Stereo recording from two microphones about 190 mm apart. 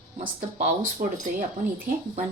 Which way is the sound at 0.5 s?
40° right (ahead or behind).